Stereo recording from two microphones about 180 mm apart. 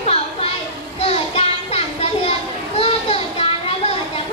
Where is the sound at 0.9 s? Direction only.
35° left (ahead or behind).